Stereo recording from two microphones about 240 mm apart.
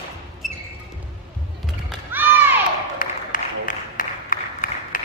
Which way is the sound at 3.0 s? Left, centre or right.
Left.